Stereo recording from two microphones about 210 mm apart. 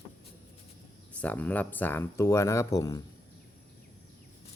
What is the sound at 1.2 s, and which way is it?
Speech, 5° left (ahead or behind).